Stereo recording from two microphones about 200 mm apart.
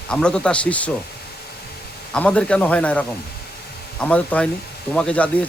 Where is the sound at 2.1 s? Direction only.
5° left (ahead or behind).